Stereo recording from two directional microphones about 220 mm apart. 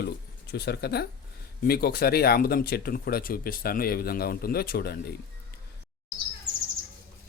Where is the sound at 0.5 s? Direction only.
45° left (ahead or behind).